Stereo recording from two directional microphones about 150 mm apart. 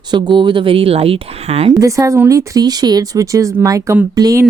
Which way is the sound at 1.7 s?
20° right (ahead or behind).